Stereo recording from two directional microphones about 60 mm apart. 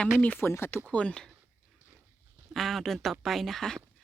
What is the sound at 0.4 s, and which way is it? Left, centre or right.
Speech, left.